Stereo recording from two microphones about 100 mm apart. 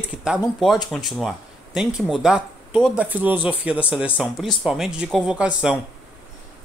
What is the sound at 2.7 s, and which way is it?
Speech, 15° right (ahead or behind).